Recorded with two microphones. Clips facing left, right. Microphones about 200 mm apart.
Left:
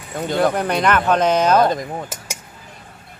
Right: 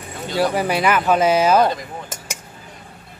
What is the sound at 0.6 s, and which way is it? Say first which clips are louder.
Speech: even; 5° right (ahead or behind).